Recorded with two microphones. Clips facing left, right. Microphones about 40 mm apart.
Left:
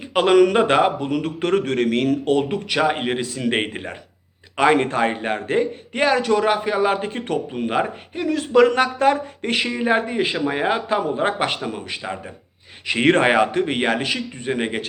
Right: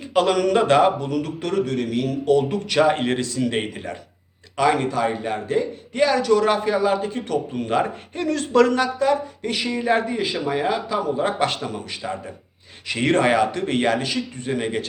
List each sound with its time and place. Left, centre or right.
0.1 s a man's voice: left
2.5 s speech: centre
3.5 s a man's voice: left
6.4 s speech: centre
6.8 s a man's voice: left
7.5 s speech: centre
8.6 s a man's voice: left
9.7 s a man's voice: left
11.4 s a man's voice: left
12.9 s a man's voice: left